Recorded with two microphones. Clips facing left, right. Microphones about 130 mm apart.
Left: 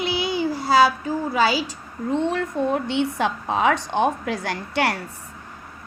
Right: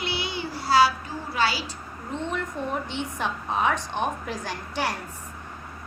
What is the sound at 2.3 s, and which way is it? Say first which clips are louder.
A woman's voice: left 6 dB; 85° left.